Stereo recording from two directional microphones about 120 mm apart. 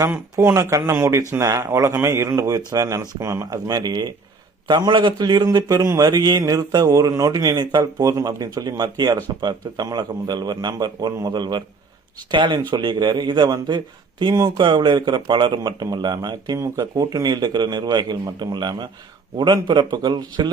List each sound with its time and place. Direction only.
0.0 s speech: 20° right (ahead or behind); by 20.5 s 35° right (ahead or behind)